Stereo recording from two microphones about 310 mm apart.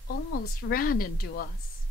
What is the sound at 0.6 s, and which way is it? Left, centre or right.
Speech, left.